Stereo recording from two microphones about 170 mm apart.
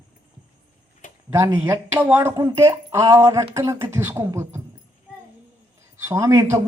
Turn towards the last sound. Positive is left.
turn(degrees=-15)  # may be behind; listen again after turning